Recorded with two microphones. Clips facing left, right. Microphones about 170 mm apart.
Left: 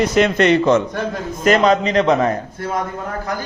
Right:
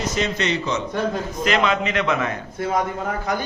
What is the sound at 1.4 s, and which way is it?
Speech, 40° left (ahead or behind).